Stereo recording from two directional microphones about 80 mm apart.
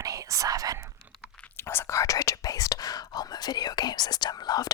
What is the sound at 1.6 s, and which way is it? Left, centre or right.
Whispering, left.